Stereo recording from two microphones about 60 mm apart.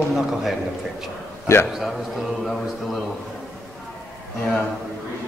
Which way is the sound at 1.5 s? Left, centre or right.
Left.